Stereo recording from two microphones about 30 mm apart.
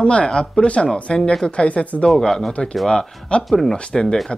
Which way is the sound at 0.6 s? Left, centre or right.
Left.